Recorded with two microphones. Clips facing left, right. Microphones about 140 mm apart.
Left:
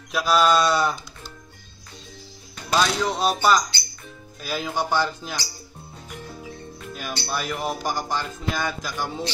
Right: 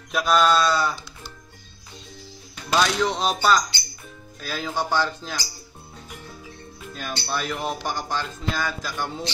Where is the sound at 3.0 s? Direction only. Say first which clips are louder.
Left 1 dB; 5° left (ahead or behind).